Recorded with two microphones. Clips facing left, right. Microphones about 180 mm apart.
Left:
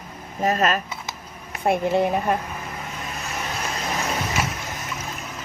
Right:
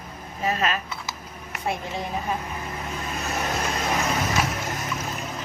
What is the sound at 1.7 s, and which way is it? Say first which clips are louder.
Speech: left 10 dB; 60° left (ahead or behind).